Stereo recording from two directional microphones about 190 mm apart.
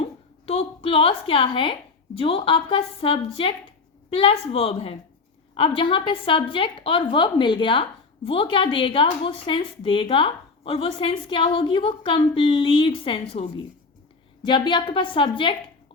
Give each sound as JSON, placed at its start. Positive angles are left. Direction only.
{"t": 0.0, "sound": "a woman's voice", "side_deg": 30}